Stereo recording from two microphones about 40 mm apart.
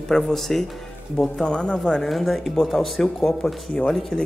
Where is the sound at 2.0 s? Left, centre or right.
Centre.